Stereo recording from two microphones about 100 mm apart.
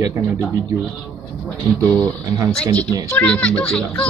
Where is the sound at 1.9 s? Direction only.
30° right (ahead or behind).